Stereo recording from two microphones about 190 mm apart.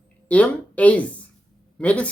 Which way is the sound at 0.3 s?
5° left (ahead or behind).